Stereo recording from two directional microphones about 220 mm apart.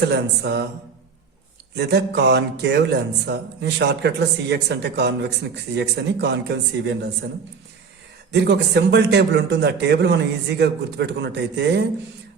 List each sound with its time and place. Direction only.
0.0 s speech: 45° right (ahead or behind)
1.7 s speech: 50° right (ahead or behind)
8.3 s speech: 50° right (ahead or behind)